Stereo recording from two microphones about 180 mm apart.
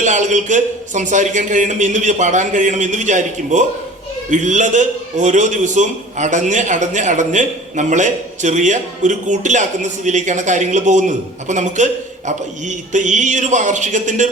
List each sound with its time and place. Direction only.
0.0 s a man's voice: 40° right (ahead or behind)